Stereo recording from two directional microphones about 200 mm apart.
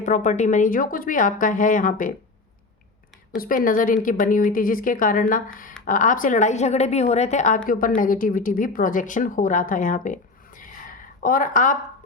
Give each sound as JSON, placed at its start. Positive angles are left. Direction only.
{"t": 0.0, "sound": "a woman's voice", "side_deg": 35}
{"t": 3.3, "sound": "a woman's voice", "side_deg": 45}
{"t": 10.6, "sound": "a sound", "side_deg": 45}